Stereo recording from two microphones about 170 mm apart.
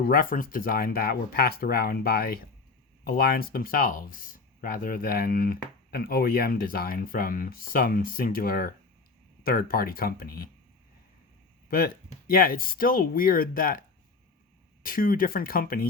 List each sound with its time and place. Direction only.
0.1 s speech: 55° left (ahead or behind)
12.3 s speech: 60° left (ahead or behind)
14.8 s speech: 55° left (ahead or behind)